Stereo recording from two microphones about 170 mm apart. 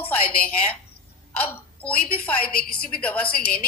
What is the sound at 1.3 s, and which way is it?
Speech, 10° left (ahead or behind).